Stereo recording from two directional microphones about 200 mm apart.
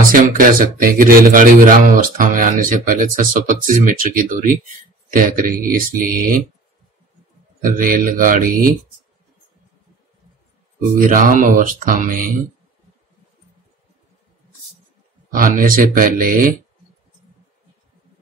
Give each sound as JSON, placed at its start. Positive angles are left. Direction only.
{"t": 0.1, "sound": "speech", "side_deg": -45}
{"t": 7.6, "sound": "speech", "side_deg": -45}
{"t": 11.1, "sound": "speech", "side_deg": -40}
{"t": 15.3, "sound": "speech", "side_deg": -45}